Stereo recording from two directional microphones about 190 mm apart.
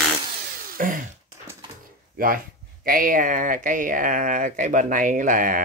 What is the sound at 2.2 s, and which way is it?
Speech, 50° right (ahead or behind).